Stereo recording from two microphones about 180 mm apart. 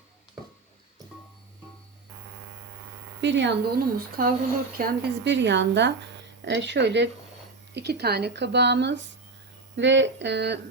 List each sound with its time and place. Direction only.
3.2 s speech: 80° right
4.2 s speech: 55° right (ahead or behind)
4.8 s speech: 75° right (ahead or behind)